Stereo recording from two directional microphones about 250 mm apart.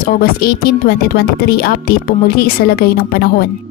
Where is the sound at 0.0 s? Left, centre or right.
Left.